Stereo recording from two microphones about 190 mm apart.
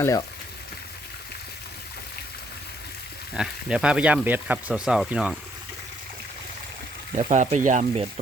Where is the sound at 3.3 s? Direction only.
5° right (ahead or behind).